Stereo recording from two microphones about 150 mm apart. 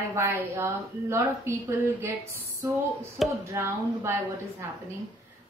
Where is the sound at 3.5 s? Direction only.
20° right (ahead or behind).